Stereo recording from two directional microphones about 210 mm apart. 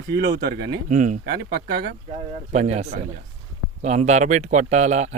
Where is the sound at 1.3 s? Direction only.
45° right (ahead or behind).